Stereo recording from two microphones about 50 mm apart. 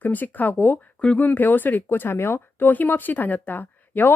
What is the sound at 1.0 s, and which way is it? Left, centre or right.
Speech, left.